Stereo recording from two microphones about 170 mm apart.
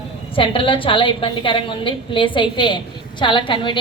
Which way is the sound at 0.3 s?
30° left (ahead or behind).